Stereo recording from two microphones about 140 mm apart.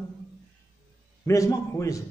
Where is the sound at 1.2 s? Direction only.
20° left (ahead or behind).